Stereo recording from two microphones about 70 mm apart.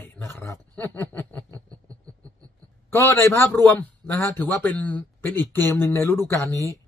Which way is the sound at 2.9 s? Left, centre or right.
Left.